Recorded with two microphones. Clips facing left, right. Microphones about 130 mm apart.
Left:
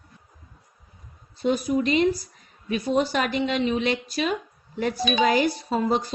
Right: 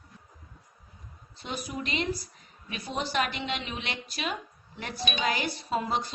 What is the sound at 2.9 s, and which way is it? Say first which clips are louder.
A woman's voice: left 6 dB; 40° left (ahead or behind).